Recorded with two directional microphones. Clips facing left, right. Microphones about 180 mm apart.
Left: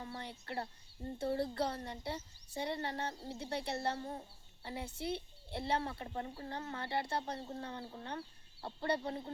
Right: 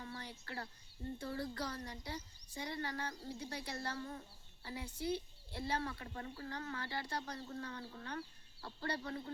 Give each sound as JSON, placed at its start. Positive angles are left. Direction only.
{"t": 0.0, "sound": "speech", "side_deg": 25}